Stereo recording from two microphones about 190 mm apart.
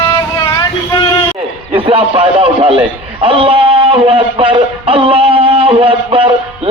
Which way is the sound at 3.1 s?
30° right (ahead or behind).